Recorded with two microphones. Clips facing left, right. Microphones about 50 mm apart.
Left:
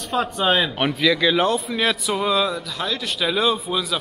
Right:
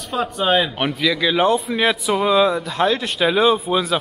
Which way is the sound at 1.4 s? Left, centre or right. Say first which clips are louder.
Right 3 dB; centre.